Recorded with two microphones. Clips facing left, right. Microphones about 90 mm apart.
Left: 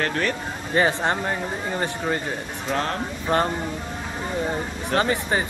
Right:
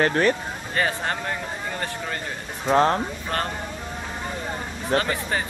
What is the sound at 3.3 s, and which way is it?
Speech, 20° left (ahead or behind).